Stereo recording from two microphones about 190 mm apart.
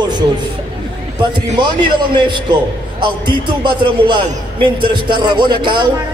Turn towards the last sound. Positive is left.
turn(degrees=-25)  # may be behind; listen again after turning